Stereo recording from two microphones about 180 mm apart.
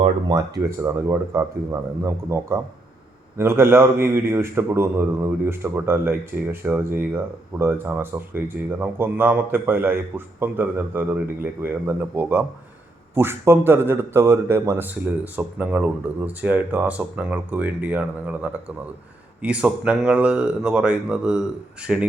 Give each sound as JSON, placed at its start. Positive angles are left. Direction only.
{"t": 0.0, "sound": "speech", "side_deg": -25}
{"t": 0.6, "sound": "speech", "side_deg": -15}